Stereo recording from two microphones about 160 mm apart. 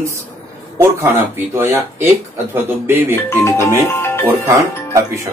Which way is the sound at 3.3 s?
15° left (ahead or behind).